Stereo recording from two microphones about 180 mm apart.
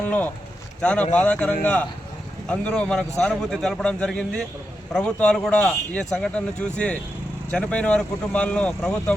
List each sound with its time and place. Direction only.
0.0 s a man's voice: 10° left (ahead or behind)